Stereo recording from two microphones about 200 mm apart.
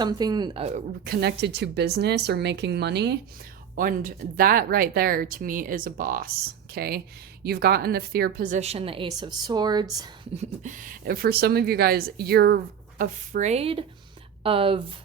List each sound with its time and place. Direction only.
0.0 s speech: 20° right (ahead or behind)
1.0 s speech: 55° right (ahead or behind)
3.8 s a woman's voice: 45° right (ahead or behind); by 9.8 s 20° right (ahead or behind)
10.3 s speech: 40° right (ahead or behind)
13.0 s a woman's voice: 40° right (ahead or behind)